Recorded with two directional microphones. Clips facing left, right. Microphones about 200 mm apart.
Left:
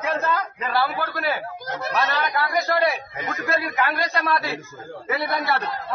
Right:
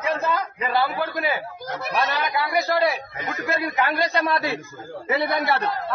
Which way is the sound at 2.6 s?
Centre (ahead or behind).